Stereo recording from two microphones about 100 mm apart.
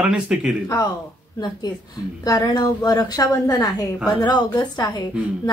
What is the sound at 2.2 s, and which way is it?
A woman's voice, 40° left (ahead or behind).